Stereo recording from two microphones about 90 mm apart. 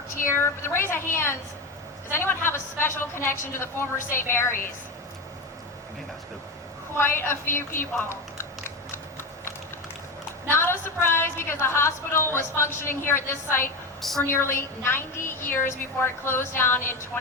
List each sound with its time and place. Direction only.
0.3 s a woman's voice: 30° left (ahead or behind)
7.0 s a woman's voice: 25° left (ahead or behind)
10.5 s a woman's voice: 25° left (ahead or behind)